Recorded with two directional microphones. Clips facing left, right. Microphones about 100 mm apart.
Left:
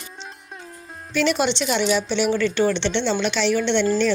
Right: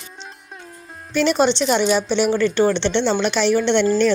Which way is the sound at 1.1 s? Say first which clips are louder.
Right 4 dB; 35° right (ahead or behind).